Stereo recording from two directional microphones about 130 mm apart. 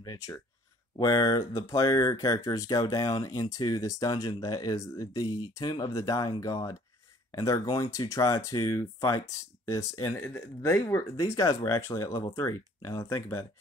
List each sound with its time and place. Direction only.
0.0 s speech: 30° left (ahead or behind)